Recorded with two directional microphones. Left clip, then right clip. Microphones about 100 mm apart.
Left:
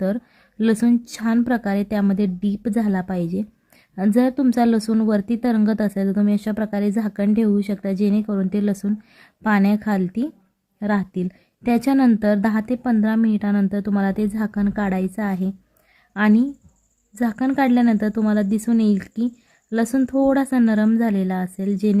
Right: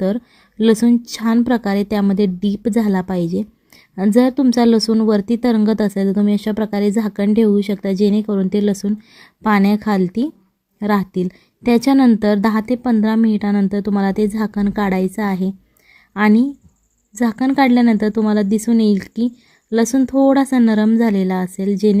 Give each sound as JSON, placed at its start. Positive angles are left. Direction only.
{"t": 0.6, "sound": "a woman's voice", "side_deg": -25}